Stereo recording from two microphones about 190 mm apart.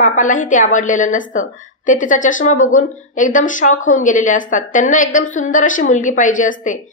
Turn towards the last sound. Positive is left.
turn(degrees=40)  # may be behind; listen again after turning